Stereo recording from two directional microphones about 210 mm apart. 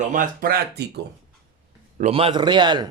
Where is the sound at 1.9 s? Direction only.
30° right (ahead or behind).